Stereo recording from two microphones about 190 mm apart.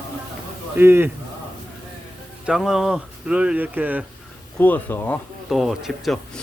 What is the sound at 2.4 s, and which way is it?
Speech, centre (ahead or behind).